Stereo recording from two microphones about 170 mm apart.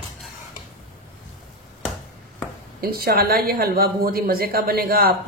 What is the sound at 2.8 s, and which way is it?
Speech, 60° right (ahead or behind).